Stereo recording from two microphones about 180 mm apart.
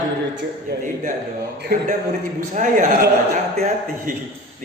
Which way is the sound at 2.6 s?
45° right (ahead or behind).